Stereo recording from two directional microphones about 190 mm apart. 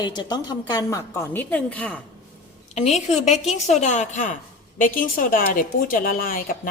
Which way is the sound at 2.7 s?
35° left (ahead or behind).